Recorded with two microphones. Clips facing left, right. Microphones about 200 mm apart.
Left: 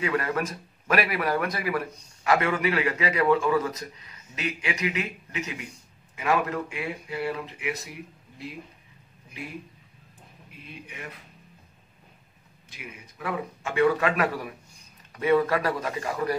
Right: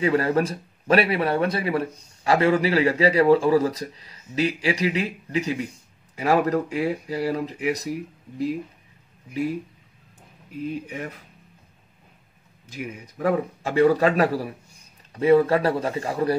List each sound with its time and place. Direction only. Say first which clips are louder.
0.0 s speech: right 6 dB; 30° right (ahead or behind)
10.6 s speech: right 12 dB; 40° right (ahead or behind)
12.6 s speech: right 10 dB; 40° right (ahead or behind)